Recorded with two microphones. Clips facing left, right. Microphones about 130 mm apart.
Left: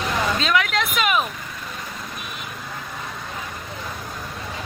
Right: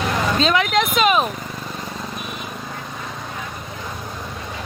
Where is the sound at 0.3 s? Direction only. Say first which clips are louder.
Right 4 dB; 25° right (ahead or behind).